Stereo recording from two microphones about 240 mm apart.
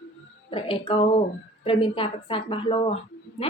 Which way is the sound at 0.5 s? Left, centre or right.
Left.